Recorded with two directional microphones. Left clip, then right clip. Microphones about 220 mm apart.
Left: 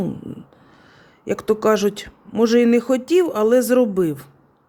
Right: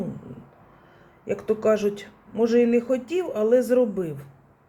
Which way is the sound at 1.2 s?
50° left (ahead or behind).